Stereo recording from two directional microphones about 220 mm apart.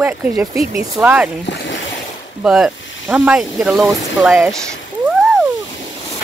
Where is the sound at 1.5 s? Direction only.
55° left (ahead or behind).